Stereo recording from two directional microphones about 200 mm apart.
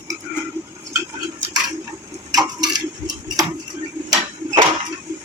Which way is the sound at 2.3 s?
20° right (ahead or behind).